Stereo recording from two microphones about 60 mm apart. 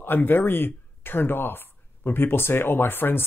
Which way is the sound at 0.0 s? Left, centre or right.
Left.